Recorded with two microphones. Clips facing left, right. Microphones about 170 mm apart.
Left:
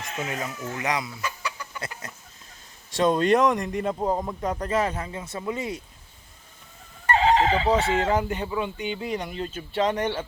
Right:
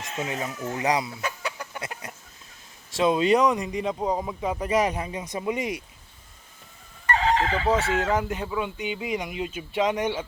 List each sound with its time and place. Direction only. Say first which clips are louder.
0.3 s speech: right 1 dB; 25° right (ahead or behind)
1.2 s chicken: right 1 dB; 60° right (ahead or behind)
2.9 s speech: even; 5° right (ahead or behind)
7.3 s chicken: left 2 dB; 20° left (ahead or behind)
7.8 s speech: left 2 dB; 35° left (ahead or behind)
8.1 s speech: left 1 dB; centre (ahead or behind)